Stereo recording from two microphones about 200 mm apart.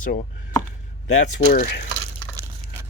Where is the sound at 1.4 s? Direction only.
40° left (ahead or behind).